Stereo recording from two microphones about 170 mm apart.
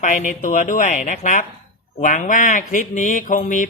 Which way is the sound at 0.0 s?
50° left (ahead or behind).